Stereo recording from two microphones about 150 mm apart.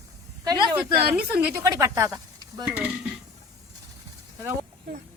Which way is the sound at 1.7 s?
20° right (ahead or behind).